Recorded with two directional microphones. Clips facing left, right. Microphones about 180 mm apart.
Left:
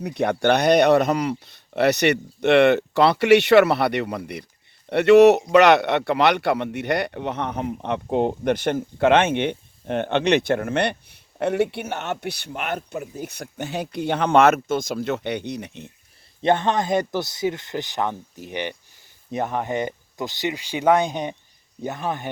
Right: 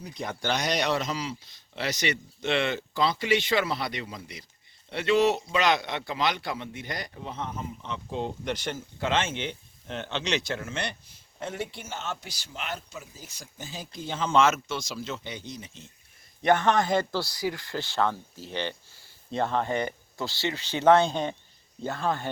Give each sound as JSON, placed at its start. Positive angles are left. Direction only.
{"t": 0.0, "sound": "speech", "side_deg": 70}
{"t": 16.4, "sound": "speech", "side_deg": 20}